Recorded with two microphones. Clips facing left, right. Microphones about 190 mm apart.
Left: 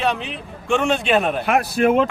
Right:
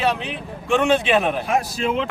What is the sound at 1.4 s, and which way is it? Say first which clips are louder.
Speech: left 5 dB; 60° left (ahead or behind).